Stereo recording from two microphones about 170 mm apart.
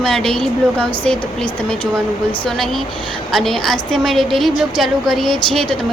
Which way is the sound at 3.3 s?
Centre (ahead or behind).